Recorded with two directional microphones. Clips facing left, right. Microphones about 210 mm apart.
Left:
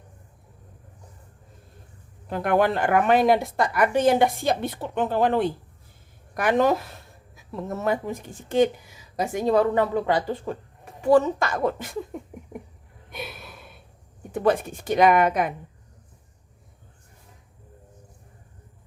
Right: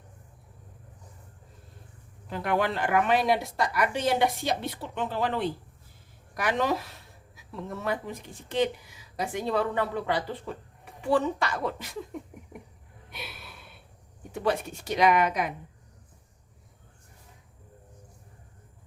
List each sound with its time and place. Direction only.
2.3 s a woman's voice: 50° left (ahead or behind)
13.1 s a sound: 50° left (ahead or behind)
14.3 s a woman's voice: 50° left (ahead or behind)